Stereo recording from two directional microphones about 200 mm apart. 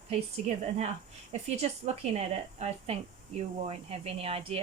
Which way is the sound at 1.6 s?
30° right (ahead or behind).